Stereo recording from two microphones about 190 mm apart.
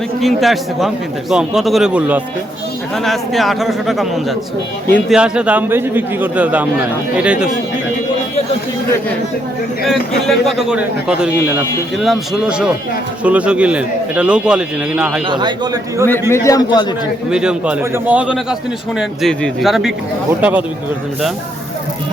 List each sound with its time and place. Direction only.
0.2 s speech: centre (ahead or behind)
5.1 s a man's voice: 5° right (ahead or behind)
9.8 s speech: centre (ahead or behind)
15.3 s a man's voice: 25° right (ahead or behind)
16.3 s a man's voice: 15° left (ahead or behind)
17.2 s a man's voice: 5° right (ahead or behind)